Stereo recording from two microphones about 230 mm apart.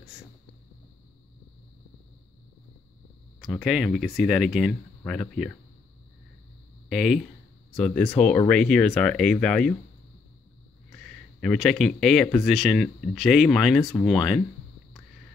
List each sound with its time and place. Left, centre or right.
3.5 s speech: centre
6.9 s speech: centre
11.4 s speech: centre